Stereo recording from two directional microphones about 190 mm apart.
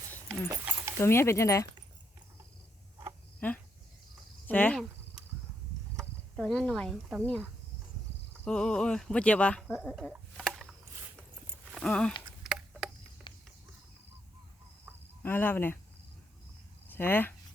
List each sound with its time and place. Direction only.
0.5 s dog: 10° right (ahead or behind)
0.9 s speech: 15° left (ahead or behind)
3.4 s cricket: 10° left (ahead or behind)
8.4 s speech: 5° left (ahead or behind)
9.9 s a sound: centre (ahead or behind)
11.7 s speech: 5° left (ahead or behind)
12.4 s a sound: 5° right (ahead or behind)
13.3 s a sound: 25° left (ahead or behind)
15.2 s speech: 10° left (ahead or behind)
16.9 s speech: 10° left (ahead or behind)